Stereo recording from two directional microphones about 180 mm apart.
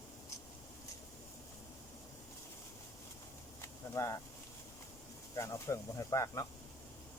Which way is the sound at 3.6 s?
15° left (ahead or behind).